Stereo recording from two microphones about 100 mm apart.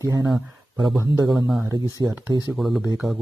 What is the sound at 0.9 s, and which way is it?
Speech, 30° right (ahead or behind).